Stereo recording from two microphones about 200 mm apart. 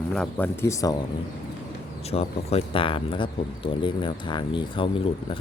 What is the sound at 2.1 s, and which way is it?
Speech, 30° left (ahead or behind).